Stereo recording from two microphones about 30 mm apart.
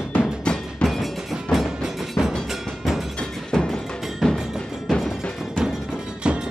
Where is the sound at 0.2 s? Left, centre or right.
Left.